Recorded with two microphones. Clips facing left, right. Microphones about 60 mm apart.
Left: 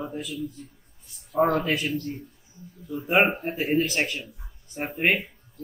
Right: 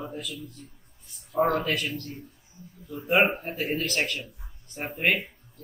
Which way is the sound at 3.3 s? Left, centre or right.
Centre.